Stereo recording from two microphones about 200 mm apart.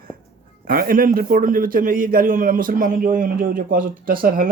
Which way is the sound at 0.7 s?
45° right (ahead or behind).